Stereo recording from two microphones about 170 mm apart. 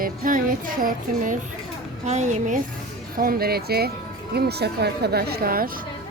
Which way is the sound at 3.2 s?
60° right (ahead or behind).